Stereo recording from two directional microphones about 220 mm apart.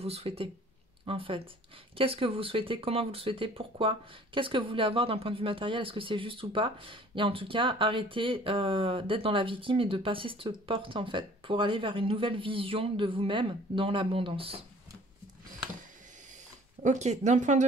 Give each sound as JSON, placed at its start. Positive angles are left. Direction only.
{"t": 0.0, "sound": "speech", "side_deg": -25}
{"t": 16.8, "sound": "speech", "side_deg": -35}